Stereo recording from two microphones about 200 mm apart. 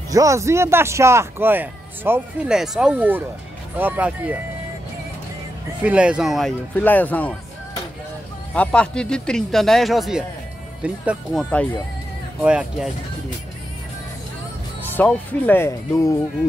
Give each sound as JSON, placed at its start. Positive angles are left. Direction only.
{"t": 0.1, "sound": "a man's voice", "side_deg": -15}
{"t": 5.8, "sound": "a man's voice", "side_deg": -5}
{"t": 8.5, "sound": "a man's voice", "side_deg": 5}
{"t": 12.4, "sound": "a man's voice", "side_deg": -5}
{"t": 15.0, "sound": "speech", "side_deg": 10}